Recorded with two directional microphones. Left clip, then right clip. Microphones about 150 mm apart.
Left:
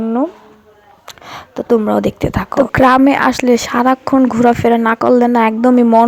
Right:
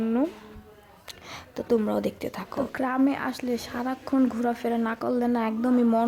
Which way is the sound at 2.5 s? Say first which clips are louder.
Left 18 dB; 60° left (ahead or behind).